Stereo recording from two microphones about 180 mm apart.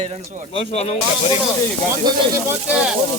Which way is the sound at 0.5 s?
35° left (ahead or behind).